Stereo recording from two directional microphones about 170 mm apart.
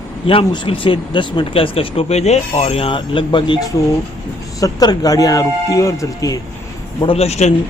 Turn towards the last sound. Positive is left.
turn(degrees=40)  # may be behind; listen again after turning